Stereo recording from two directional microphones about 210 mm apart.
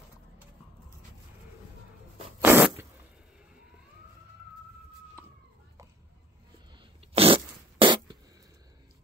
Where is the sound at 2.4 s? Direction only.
10° right (ahead or behind).